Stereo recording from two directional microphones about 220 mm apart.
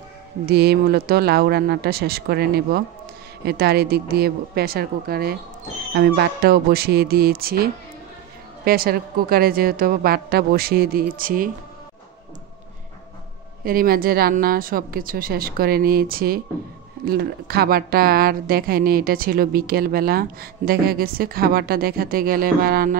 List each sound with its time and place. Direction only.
0.5 s a woman's voice: 45° right (ahead or behind)
8.6 s a woman's voice: 45° right (ahead or behind)
13.7 s a woman's voice: 40° right (ahead or behind)